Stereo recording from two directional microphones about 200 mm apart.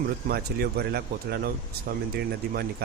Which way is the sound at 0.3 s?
50° right (ahead or behind).